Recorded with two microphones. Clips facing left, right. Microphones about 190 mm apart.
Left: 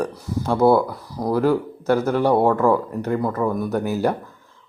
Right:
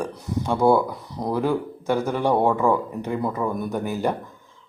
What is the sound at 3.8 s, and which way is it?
Speech, 10° left (ahead or behind).